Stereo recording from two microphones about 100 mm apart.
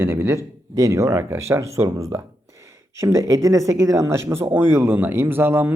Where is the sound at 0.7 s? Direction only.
35° right (ahead or behind).